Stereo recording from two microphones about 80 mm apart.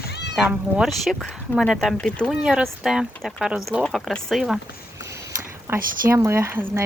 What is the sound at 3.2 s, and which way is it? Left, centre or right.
Speech, centre.